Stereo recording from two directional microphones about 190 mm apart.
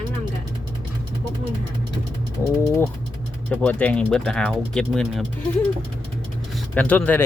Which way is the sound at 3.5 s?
10° left (ahead or behind).